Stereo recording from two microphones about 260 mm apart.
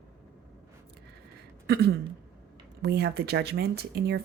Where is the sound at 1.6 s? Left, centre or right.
Right.